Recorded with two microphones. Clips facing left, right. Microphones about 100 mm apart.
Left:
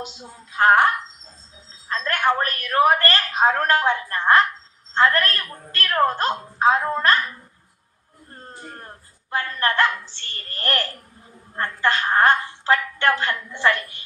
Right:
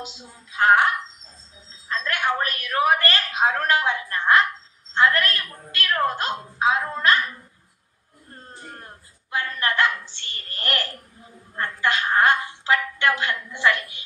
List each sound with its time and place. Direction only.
0.0 s a woman's voice: 40° left (ahead or behind)
1.9 s a woman's voice: 45° left (ahead or behind)
9.3 s a woman's voice: 45° left (ahead or behind)